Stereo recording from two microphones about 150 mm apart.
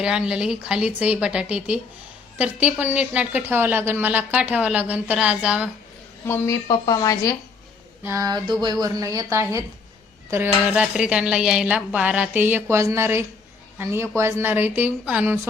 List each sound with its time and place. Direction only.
0.0 s a woman's voice: 5° right (ahead or behind)
6.2 s speech: 15° left (ahead or behind)
8.0 s a woman's voice: 20° right (ahead or behind)